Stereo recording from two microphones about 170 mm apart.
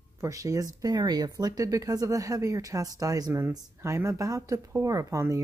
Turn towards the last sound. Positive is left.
turn(degrees=-20)  # may be behind; listen again after turning